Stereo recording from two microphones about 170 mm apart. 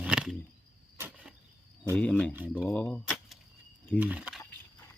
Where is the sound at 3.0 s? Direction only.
Centre (ahead or behind).